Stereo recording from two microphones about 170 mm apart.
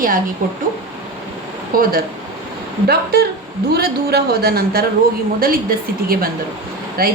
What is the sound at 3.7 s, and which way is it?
A woman's voice, 65° right (ahead or behind).